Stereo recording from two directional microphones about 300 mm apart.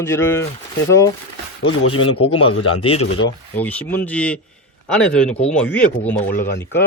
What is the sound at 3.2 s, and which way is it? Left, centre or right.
A man's voice, centre.